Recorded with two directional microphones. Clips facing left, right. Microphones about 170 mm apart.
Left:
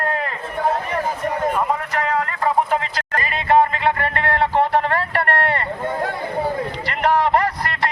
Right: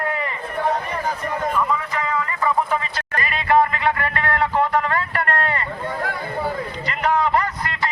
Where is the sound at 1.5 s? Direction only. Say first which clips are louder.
Left 1 dB; 65° left (ahead or behind).